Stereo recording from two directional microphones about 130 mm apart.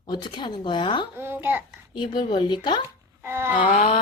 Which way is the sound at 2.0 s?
35° left (ahead or behind).